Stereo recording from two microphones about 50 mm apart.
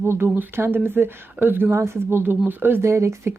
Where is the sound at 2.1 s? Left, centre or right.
Right.